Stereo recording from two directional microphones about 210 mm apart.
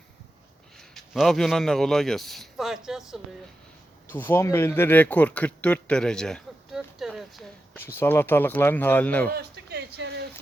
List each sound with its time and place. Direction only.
0.8 s a man's voice: centre (ahead or behind)
4.1 s speech: 10° left (ahead or behind)
9.3 s a sound: 50° right (ahead or behind)